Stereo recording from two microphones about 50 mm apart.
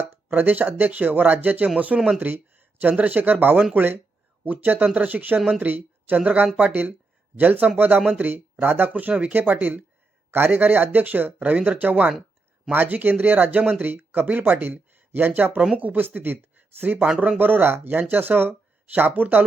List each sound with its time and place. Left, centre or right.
0.1 s speech: right
1.9 s speech: centre
2.2 s a sound: right
3.0 s a woman's voice: right